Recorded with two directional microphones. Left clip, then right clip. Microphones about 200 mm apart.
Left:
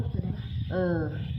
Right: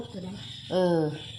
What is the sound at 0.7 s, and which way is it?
Speech, 20° right (ahead or behind).